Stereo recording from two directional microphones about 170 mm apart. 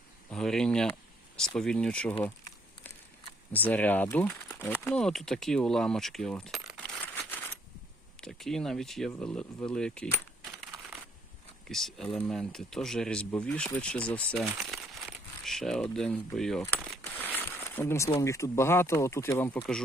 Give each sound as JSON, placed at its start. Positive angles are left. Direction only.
{"t": 0.3, "sound": "speech", "side_deg": 5}
{"t": 2.2, "sound": "a sound", "side_deg": 10}
{"t": 3.5, "sound": "speech", "side_deg": 10}
{"t": 8.2, "sound": "speech", "side_deg": 0}
{"t": 9.2, "sound": "coin", "side_deg": 10}
{"t": 11.7, "sound": "speech", "side_deg": 0}
{"t": 17.1, "sound": "a sound", "side_deg": 10}
{"t": 18.2, "sound": "speech", "side_deg": 20}